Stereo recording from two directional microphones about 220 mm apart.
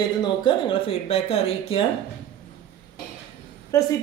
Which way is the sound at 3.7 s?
15° left (ahead or behind).